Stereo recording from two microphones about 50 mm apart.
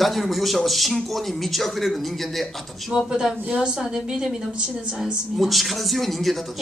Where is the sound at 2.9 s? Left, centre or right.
Centre.